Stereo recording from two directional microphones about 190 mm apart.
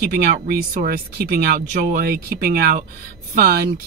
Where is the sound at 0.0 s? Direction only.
55° right (ahead or behind).